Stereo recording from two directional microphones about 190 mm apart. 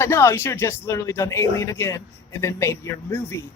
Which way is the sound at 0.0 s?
15° left (ahead or behind).